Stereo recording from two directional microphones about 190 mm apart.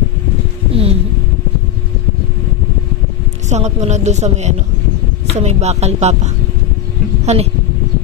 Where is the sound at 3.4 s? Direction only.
35° right (ahead or behind).